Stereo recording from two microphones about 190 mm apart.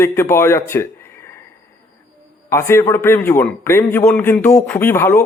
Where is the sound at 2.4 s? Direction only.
15° left (ahead or behind).